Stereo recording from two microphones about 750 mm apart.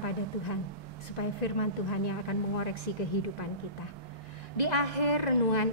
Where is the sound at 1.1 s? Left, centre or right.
Left.